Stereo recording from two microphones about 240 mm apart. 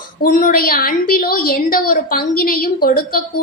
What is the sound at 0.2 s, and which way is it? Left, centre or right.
A woman's voice, left.